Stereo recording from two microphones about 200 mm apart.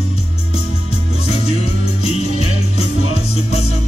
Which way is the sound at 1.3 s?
30° left (ahead or behind).